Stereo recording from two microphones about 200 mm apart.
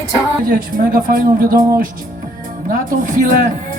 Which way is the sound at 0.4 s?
45° right (ahead or behind).